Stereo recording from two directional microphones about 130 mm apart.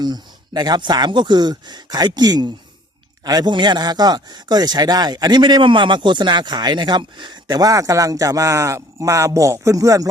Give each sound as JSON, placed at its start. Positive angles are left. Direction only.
{"t": 0.0, "sound": "speech", "side_deg": -30}